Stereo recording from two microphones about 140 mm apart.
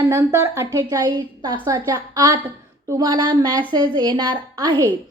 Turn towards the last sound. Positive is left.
turn(degrees=-25)  # may be behind; listen again after turning